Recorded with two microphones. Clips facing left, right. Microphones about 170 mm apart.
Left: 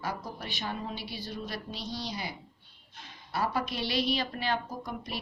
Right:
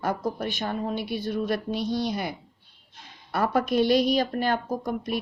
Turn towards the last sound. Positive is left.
turn(degrees=-50)  # may be behind; listen again after turning